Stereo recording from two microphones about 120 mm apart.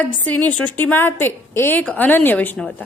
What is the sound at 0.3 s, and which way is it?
A woman's voice, 15° left (ahead or behind).